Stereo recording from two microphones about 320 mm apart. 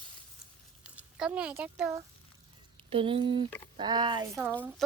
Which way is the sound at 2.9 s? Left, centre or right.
Centre.